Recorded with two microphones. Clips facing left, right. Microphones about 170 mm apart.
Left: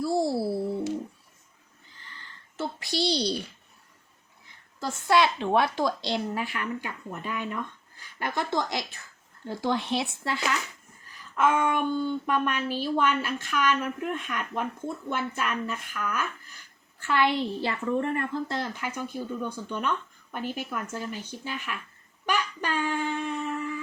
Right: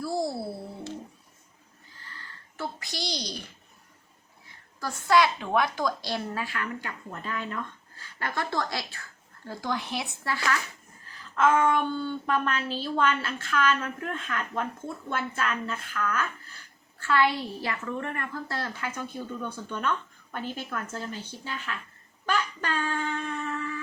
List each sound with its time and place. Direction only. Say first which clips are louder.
0.0 s a child's voice: left 4 dB; 25° left (ahead or behind)
2.6 s a child's voice: left 6 dB; 25° left (ahead or behind)
4.8 s a woman's voice: even; 25° left (ahead or behind)
22.3 s a sound: left 1 dB; 15° left (ahead or behind)